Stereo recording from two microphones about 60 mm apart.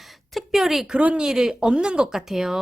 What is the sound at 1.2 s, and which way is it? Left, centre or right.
Speech, centre.